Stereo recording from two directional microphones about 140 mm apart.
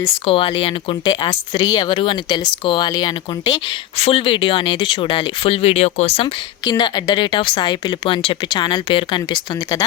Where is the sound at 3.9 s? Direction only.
45° left (ahead or behind).